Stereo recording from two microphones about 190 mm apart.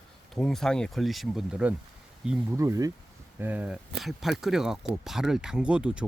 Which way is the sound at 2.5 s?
15° right (ahead or behind).